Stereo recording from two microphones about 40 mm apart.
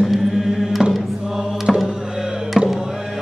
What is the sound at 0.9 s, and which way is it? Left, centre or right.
Mantra, centre.